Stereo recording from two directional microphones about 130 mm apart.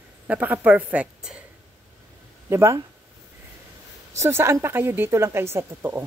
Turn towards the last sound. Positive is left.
turn(degrees=-20)  # may be behind; listen again after turning